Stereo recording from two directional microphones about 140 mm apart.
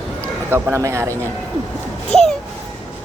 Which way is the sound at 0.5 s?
20° right (ahead or behind).